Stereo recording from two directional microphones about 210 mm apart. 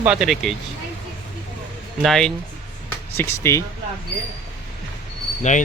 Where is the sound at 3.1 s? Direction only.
10° left (ahead or behind).